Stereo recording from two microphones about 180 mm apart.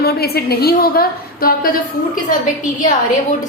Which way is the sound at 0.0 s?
60° left (ahead or behind).